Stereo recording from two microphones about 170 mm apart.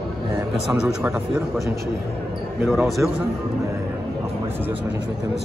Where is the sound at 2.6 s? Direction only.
Centre (ahead or behind).